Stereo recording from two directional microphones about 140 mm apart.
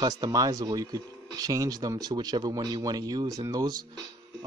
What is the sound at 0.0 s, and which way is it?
Speech, 30° right (ahead or behind).